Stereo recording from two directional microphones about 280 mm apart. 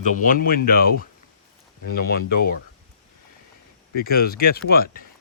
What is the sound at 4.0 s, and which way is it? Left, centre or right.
Speech, left.